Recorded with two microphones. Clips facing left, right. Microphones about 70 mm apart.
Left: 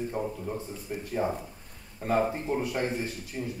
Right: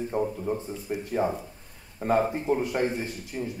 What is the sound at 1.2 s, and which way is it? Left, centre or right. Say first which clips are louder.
Speech: right 2 dB; right.